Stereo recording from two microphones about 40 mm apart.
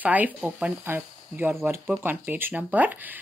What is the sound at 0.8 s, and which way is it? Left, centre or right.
Speech, right.